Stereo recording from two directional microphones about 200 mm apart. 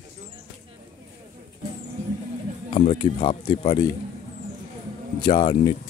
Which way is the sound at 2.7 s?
25° left (ahead or behind).